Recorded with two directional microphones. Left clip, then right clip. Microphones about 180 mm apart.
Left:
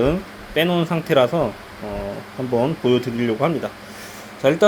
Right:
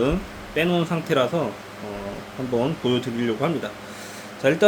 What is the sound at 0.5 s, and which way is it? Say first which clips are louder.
Speech: left 3 dB; 25° left (ahead or behind).